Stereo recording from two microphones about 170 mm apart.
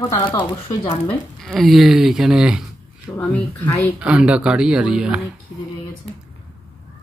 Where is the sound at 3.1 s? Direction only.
10° left (ahead or behind).